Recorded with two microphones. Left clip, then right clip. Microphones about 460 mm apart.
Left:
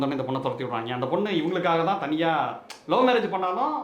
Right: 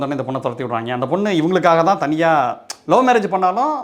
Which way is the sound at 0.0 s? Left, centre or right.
Right.